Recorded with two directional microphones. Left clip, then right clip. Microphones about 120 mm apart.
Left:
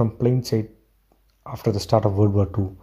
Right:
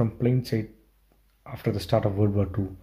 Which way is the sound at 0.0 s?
35° left (ahead or behind).